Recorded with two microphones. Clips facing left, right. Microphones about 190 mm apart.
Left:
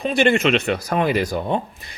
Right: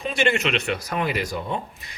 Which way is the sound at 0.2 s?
50° left (ahead or behind).